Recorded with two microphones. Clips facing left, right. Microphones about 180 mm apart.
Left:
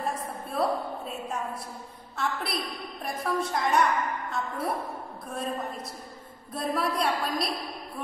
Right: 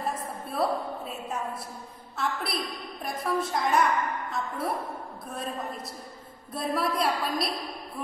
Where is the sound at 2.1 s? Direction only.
Centre (ahead or behind).